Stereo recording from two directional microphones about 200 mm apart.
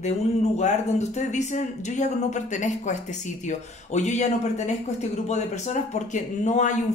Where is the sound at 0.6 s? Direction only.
35° left (ahead or behind).